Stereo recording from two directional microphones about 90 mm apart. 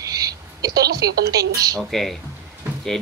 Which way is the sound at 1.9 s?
Centre (ahead or behind).